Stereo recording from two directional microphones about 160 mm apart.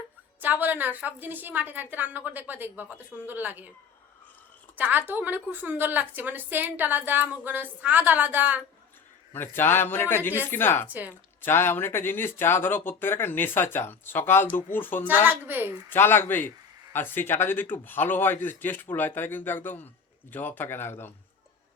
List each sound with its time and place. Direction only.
0.3 s a woman's voice: 10° right (ahead or behind)
4.8 s a woman's voice: 10° right (ahead or behind)
9.3 s speech: 15° left (ahead or behind)
10.8 s a woman's voice: 10° right (ahead or behind)
11.1 s speech: 15° left (ahead or behind)
15.0 s a woman's voice: 10° right (ahead or behind)
15.9 s speech: 15° left (ahead or behind)